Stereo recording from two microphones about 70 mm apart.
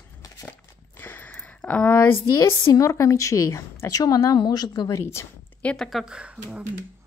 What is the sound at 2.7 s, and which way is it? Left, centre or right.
A woman's voice, left.